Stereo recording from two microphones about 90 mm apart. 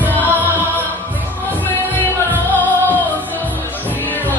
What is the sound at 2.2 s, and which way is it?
Music, 20° left (ahead or behind).